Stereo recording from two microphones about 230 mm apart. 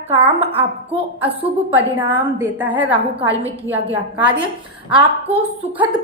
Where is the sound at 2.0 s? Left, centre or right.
Centre.